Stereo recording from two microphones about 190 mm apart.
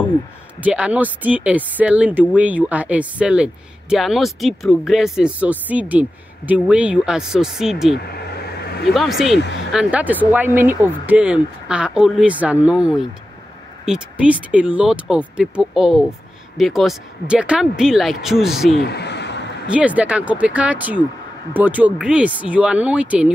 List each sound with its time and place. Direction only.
0.6 s speech: 5° right (ahead or behind)
18.9 s a sound: 60° left (ahead or behind)
19.7 s speech: 5° right (ahead or behind)